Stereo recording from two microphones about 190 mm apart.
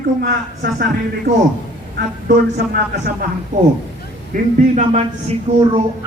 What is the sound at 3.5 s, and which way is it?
A man's voice, 40° right (ahead or behind).